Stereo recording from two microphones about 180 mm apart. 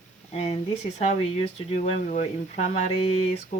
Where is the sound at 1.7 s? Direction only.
40° left (ahead or behind).